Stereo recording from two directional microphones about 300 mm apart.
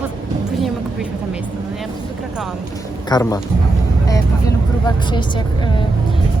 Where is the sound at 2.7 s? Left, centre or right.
Centre.